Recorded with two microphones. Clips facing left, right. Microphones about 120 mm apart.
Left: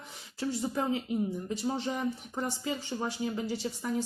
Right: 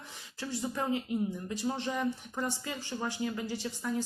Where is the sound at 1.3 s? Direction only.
30° left (ahead or behind).